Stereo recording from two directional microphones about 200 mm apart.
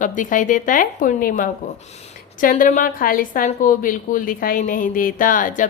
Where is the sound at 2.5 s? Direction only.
40° left (ahead or behind).